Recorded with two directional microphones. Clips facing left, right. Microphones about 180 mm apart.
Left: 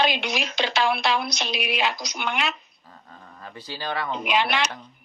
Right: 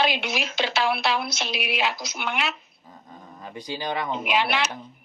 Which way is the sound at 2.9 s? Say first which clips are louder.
Right 3 dB; 15° right (ahead or behind).